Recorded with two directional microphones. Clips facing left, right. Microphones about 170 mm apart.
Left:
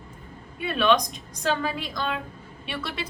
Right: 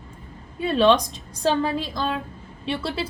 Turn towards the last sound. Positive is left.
turn(degrees=-30)  # may be behind; listen again after turning